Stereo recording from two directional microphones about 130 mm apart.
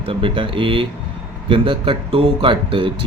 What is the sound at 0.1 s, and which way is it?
Speech, 40° right (ahead or behind).